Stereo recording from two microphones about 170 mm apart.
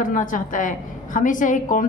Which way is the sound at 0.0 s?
50° left (ahead or behind).